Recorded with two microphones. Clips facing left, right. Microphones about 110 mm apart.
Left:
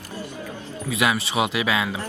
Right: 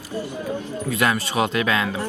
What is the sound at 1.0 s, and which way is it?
Speech, 10° left (ahead or behind).